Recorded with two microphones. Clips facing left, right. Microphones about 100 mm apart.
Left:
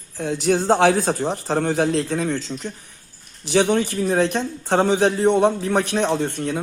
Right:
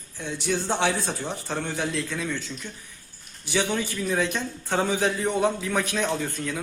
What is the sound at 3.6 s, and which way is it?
Speech, 80° left.